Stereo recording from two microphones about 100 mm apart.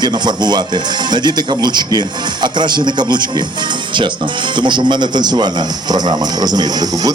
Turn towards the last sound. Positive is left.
turn(degrees=-45)  # may be behind; listen again after turning